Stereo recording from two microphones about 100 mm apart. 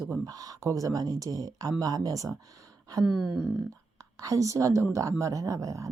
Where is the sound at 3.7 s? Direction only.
35° right (ahead or behind).